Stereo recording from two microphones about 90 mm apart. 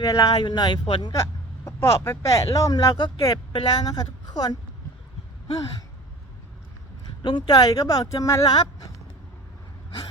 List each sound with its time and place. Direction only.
0.0 s speech: 45° left (ahead or behind); by 1.1 s 65° left (ahead or behind)
1.1 s speech: 30° left (ahead or behind)
7.2 s speech: 55° left (ahead or behind); by 8.5 s 40° left (ahead or behind)